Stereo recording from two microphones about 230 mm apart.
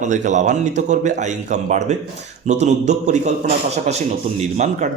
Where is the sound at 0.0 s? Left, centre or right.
Right.